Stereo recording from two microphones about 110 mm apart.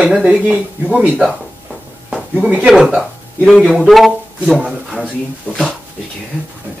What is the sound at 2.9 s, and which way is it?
Speech, 5° left (ahead or behind).